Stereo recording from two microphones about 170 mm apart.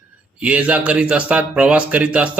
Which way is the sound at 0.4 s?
5° right (ahead or behind).